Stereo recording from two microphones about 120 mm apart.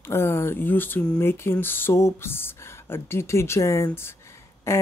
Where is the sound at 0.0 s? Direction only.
20° left (ahead or behind).